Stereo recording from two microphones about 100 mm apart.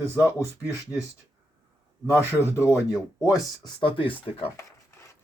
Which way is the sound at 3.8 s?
60° left (ahead or behind).